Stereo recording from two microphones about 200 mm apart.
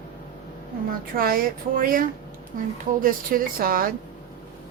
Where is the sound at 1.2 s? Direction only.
45° right (ahead or behind).